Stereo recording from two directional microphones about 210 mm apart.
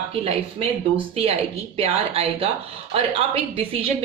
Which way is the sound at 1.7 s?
30° right (ahead or behind).